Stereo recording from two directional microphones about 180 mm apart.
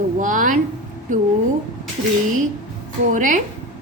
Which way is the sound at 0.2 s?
45° right (ahead or behind).